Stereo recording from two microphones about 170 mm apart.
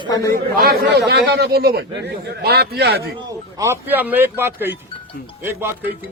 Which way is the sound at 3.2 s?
20° right (ahead or behind).